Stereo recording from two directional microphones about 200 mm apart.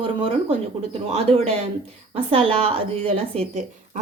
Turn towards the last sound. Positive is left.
turn(degrees=-30)  # may be behind; listen again after turning